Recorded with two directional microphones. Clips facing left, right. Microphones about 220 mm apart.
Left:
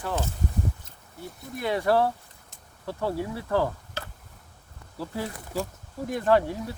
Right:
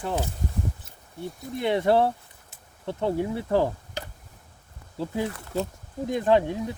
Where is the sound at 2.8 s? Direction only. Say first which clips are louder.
Right 3 dB; 20° right (ahead or behind).